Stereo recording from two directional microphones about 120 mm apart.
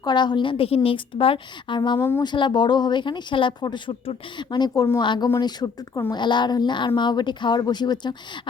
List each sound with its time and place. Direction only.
0.0 s a woman's voice: 40° left (ahead or behind)
2.0 s speech: 20° left (ahead or behind)
2.2 s speech: 40° left (ahead or behind)